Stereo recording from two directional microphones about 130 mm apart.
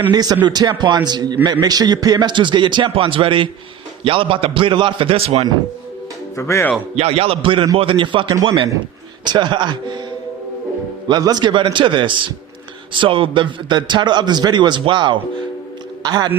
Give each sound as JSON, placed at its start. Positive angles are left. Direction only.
{"t": 0.1, "sound": "a man's voice", "side_deg": -30}
{"t": 6.3, "sound": "speech", "side_deg": 20}
{"t": 6.9, "sound": "a man's voice", "side_deg": -50}
{"t": 11.1, "sound": "a man's voice", "side_deg": -30}